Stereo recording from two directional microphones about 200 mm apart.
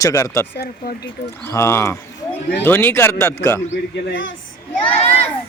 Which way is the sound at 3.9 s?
65° left (ahead or behind).